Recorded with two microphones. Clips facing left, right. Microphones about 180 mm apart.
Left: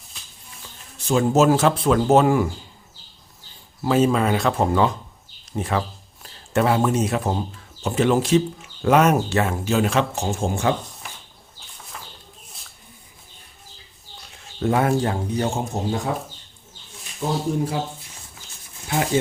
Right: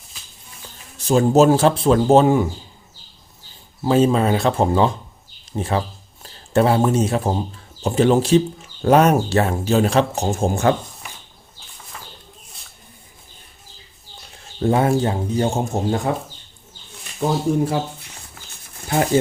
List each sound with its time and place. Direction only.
0.1 s music: centre (ahead or behind)
0.9 s speech: 40° right (ahead or behind)
3.8 s speech: 30° right (ahead or behind)
11.0 s a sound: centre (ahead or behind)
11.8 s bird: centre (ahead or behind)
14.6 s speech: 25° right (ahead or behind)
15.5 s speech: 50° right (ahead or behind)
17.7 s speech: 70° right (ahead or behind)
18.9 s speech: 40° right (ahead or behind)